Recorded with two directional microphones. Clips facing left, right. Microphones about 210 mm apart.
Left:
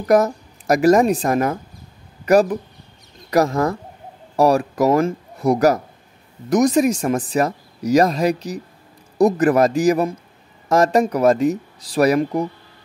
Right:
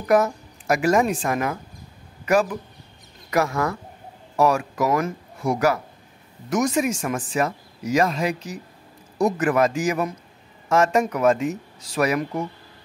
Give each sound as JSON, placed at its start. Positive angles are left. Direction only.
{"t": 0.1, "sound": "a woman's voice", "side_deg": 40}